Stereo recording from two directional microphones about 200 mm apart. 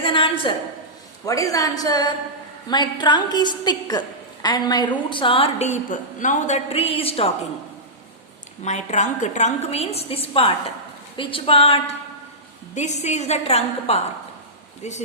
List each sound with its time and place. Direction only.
0.0 s a sound: 25° left (ahead or behind)
1.2 s a woman's voice: 15° left (ahead or behind)
8.6 s a woman's voice: 35° left (ahead or behind)